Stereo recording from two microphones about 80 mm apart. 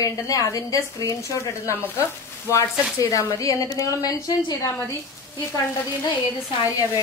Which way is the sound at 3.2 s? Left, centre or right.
Left.